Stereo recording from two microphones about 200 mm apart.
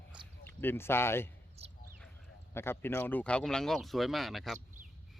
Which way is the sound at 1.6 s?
30° right (ahead or behind).